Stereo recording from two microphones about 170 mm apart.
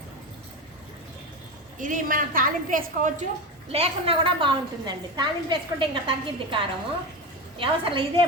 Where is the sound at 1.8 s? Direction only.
50° right (ahead or behind).